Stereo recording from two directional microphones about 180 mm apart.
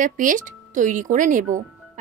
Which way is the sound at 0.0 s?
50° right (ahead or behind).